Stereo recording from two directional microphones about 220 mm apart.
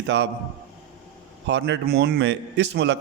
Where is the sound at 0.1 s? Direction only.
55° right (ahead or behind).